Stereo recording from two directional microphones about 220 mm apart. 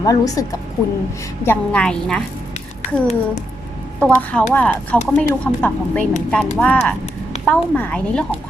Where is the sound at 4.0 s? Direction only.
5° left (ahead or behind).